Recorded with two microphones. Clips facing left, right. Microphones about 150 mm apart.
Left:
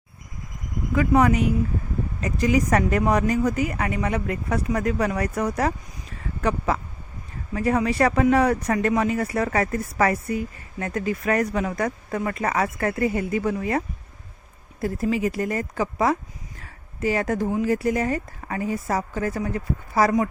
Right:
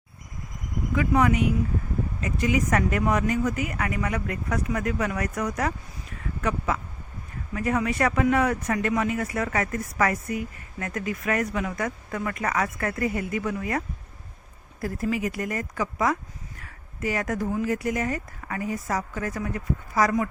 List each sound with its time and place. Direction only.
0.9 s speech: 35° left (ahead or behind)
6.1 s a sound: 30° left (ahead or behind)
7.5 s speech: 30° left (ahead or behind)